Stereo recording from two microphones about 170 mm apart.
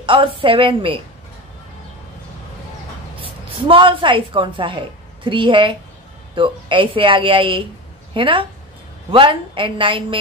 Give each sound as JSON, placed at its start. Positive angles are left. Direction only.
{"t": 0.0, "sound": "a woman's voice", "side_deg": -30}
{"t": 3.2, "sound": "a woman's voice", "side_deg": -30}